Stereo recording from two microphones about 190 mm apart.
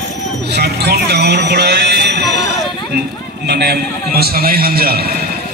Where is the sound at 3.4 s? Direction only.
60° right (ahead or behind).